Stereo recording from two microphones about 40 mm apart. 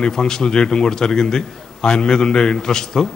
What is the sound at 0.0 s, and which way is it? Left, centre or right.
A man's voice, centre.